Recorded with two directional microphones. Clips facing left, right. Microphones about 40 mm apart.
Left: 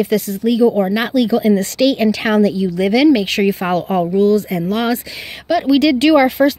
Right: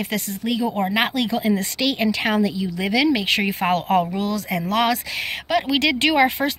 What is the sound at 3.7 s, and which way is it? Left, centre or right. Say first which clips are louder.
Speech: left 2 dB; right.